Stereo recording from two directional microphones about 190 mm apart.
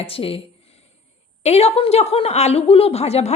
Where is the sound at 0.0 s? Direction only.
30° left (ahead or behind).